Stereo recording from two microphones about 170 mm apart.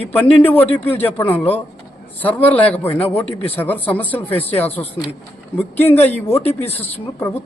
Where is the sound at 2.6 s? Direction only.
35° left (ahead or behind).